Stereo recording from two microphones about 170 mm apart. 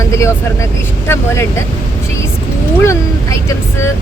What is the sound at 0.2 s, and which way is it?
Speech, 15° left (ahead or behind).